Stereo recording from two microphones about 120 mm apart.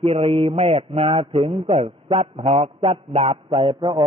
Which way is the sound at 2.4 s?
55° right (ahead or behind).